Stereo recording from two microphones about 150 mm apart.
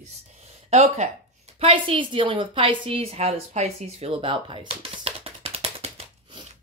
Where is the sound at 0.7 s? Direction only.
45° right (ahead or behind).